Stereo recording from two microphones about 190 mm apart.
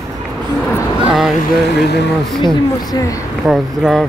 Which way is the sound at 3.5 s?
Centre (ahead or behind).